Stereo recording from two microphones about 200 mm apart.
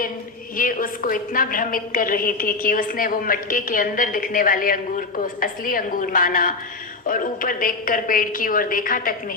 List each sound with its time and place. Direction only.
0.5 s a woman's voice: 45° left (ahead or behind)